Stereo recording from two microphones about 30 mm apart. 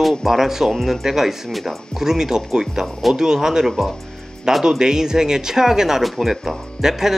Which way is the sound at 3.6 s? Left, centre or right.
Centre.